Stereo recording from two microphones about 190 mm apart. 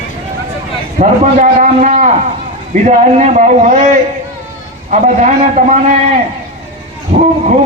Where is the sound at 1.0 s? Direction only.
40° right (ahead or behind).